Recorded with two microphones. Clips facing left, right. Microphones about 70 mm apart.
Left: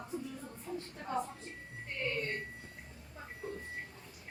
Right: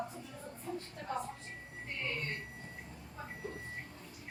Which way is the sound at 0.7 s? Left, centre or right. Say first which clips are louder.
Even; centre.